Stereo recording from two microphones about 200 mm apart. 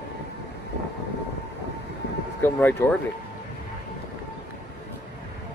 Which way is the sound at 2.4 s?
10° left (ahead or behind).